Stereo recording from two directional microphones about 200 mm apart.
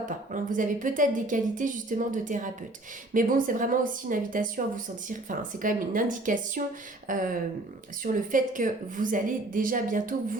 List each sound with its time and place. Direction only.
0.0 s speech: 40° right (ahead or behind)